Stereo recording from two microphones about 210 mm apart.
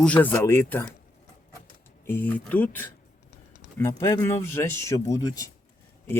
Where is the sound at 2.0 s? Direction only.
10° left (ahead or behind).